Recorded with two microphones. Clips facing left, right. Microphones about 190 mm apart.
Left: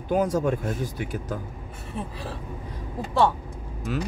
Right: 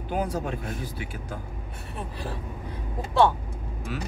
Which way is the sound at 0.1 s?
45° left (ahead or behind).